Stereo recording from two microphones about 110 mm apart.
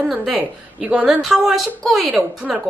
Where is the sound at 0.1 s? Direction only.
5° right (ahead or behind).